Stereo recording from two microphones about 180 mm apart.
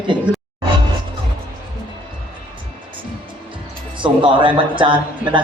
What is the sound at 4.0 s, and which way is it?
Speech, 30° right (ahead or behind).